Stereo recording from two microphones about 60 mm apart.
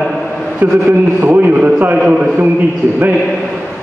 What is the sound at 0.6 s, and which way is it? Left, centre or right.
Speech, right.